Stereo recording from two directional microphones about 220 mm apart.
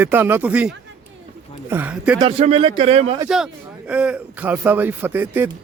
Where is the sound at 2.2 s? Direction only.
25° right (ahead or behind).